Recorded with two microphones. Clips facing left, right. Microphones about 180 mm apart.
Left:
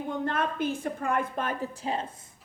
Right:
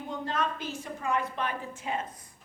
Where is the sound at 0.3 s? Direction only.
55° left (ahead or behind); by 2.1 s 30° left (ahead or behind).